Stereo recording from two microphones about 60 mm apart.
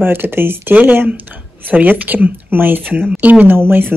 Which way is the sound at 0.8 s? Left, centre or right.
Right.